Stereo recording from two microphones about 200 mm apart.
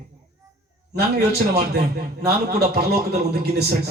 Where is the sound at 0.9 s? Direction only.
55° right (ahead or behind).